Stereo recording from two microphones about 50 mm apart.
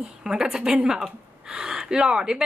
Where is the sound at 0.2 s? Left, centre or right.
Centre.